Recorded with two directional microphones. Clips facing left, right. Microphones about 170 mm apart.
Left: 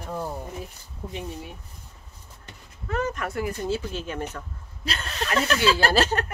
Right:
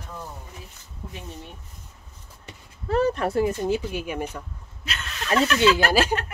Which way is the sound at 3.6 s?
15° right (ahead or behind).